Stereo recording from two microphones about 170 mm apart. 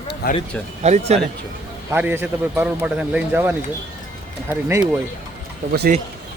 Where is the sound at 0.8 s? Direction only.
40° right (ahead or behind).